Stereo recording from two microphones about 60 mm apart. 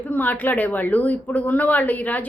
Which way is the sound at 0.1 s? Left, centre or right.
Left.